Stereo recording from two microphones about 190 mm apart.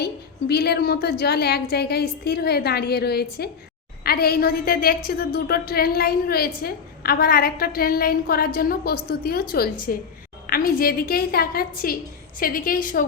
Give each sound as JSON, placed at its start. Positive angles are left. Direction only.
{"t": 0.0, "sound": "a woman's voice", "side_deg": 60}